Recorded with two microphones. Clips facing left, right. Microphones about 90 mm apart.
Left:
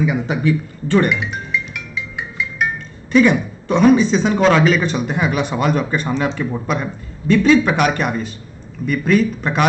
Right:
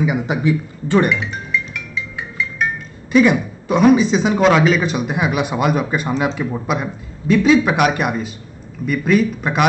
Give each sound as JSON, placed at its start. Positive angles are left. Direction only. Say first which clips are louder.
{"t": 0.0, "sound": "speech", "louder": "even", "side_deg": -15}
{"t": 1.2, "sound": "music", "louder": "even", "side_deg": 15}
{"t": 3.1, "sound": "speech", "louder": "even", "side_deg": -5}